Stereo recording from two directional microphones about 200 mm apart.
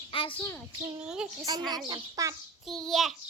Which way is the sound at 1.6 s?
20° right (ahead or behind).